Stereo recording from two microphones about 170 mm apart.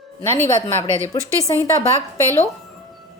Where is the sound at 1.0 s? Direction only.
20° left (ahead or behind).